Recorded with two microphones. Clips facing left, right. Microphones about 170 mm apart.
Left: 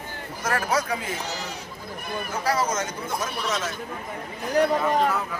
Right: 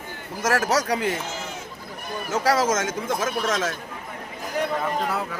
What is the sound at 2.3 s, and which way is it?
Speech, 90° right.